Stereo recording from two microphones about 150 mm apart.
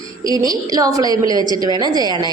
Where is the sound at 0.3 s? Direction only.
25° right (ahead or behind).